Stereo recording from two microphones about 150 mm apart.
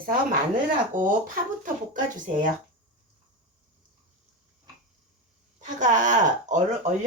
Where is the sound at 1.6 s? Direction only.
60° right (ahead or behind).